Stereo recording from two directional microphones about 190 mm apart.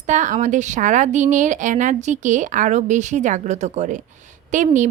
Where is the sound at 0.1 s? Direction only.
40° right (ahead or behind).